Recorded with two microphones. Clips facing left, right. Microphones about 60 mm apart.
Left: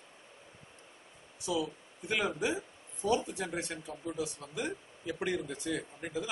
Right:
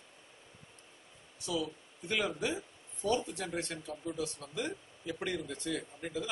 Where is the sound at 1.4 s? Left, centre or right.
Centre.